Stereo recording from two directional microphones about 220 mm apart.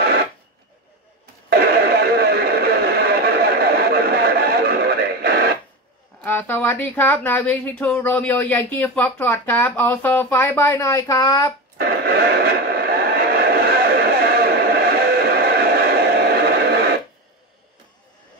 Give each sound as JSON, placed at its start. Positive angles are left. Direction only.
{"t": 1.5, "sound": "radio", "side_deg": -45}
{"t": 6.2, "sound": "speech", "side_deg": 10}
{"t": 12.0, "sound": "a sound", "side_deg": -45}